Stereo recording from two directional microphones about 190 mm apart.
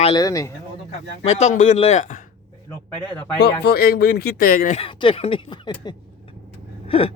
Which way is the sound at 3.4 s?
60° left (ahead or behind).